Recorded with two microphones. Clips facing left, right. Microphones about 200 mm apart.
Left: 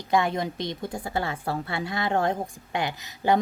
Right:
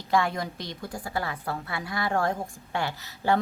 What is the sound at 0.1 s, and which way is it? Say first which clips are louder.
A woman's voice: left 2 dB; 20° left (ahead or behind).